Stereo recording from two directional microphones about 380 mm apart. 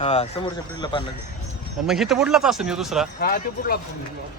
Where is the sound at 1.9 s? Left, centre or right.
Centre.